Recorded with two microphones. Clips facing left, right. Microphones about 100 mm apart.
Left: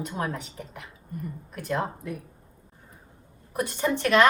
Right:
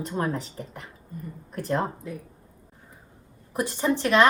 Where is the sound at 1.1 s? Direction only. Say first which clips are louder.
Left 3 dB; 65° left (ahead or behind).